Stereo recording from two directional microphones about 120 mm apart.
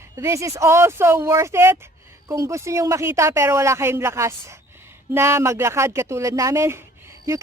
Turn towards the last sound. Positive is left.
turn(degrees=-25)  # may be behind; listen again after turning